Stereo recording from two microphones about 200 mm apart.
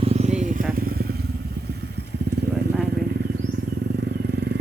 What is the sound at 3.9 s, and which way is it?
Vehicle, 55° right (ahead or behind).